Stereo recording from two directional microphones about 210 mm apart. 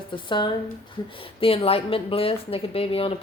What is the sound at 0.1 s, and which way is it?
Speech, 25° left (ahead or behind).